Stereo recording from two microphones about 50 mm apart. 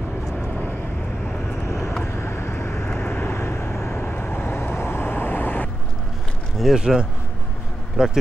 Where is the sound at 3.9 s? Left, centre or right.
Left.